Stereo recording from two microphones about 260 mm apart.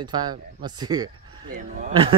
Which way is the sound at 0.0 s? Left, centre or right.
Centre.